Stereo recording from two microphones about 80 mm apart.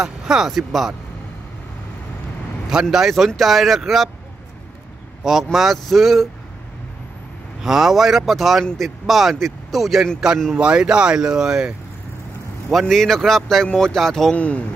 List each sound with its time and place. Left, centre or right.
0.0 s speech: centre
2.7 s speech: centre
5.2 s speech: centre
7.6 s speech: centre
12.7 s speech: centre
14.3 s speech: centre